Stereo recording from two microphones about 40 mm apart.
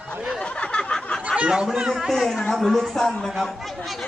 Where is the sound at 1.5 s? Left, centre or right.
Centre.